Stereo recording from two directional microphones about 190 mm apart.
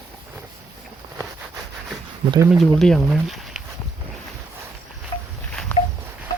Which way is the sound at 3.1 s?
Centre (ahead or behind).